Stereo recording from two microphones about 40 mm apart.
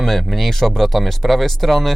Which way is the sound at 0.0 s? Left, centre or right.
Centre.